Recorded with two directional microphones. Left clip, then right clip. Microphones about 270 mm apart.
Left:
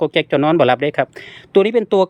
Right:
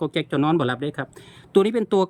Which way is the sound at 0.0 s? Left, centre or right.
Centre.